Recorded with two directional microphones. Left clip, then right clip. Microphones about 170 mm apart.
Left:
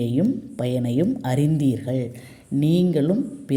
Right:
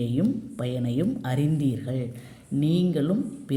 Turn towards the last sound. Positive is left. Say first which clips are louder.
# left 4 dB
turn(degrees=30)  # may be behind; listen again after turning